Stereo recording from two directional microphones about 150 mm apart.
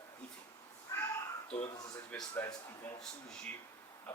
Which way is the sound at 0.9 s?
20° left (ahead or behind).